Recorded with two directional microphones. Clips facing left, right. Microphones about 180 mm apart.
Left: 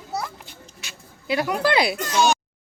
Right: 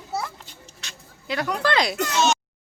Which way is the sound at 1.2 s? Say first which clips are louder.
Left 3 dB; 10° left (ahead or behind).